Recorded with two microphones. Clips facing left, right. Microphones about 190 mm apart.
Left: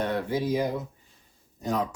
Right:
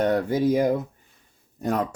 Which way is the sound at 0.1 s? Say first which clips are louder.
Right 6 dB; 45° right (ahead or behind).